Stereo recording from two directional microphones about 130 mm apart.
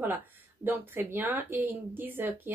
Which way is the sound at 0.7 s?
15° right (ahead or behind).